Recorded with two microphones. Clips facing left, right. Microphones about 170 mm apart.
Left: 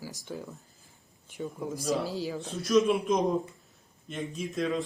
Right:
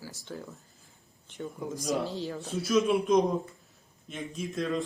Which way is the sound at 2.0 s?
5° left (ahead or behind).